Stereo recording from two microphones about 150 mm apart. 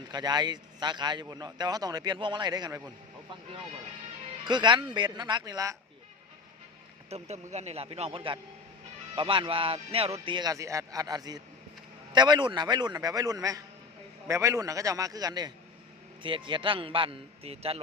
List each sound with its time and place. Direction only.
0.1 s a man's voice: 30° right (ahead or behind)
4.4 s a man's voice: 30° right (ahead or behind)
7.1 s a man's voice: 45° right (ahead or behind)